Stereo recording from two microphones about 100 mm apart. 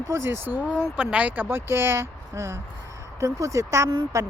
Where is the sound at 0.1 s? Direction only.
25° right (ahead or behind).